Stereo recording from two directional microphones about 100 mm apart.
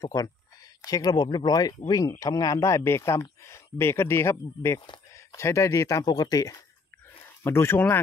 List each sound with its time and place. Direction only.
0.0 s speech: 40° left (ahead or behind)
7.4 s speech: 25° left (ahead or behind)